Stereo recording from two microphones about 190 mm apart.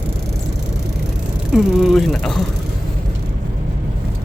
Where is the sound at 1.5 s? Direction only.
Centre (ahead or behind).